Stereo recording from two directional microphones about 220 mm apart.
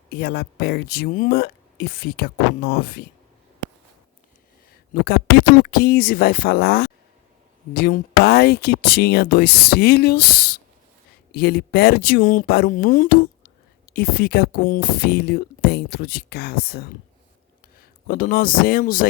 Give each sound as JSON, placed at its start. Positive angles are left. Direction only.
{"t": 0.1, "sound": "speech", "side_deg": 45}
{"t": 4.7, "sound": "speech", "side_deg": 45}
{"t": 18.1, "sound": "speech", "side_deg": 40}